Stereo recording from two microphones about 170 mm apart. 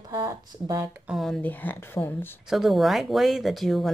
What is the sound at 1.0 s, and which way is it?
Speech, centre (ahead or behind).